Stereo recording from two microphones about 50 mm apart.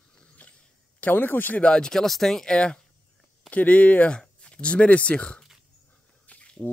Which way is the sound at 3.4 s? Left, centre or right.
Left.